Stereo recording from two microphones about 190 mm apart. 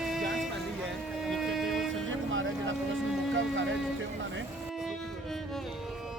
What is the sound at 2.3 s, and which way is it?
Vehicle, 90° right.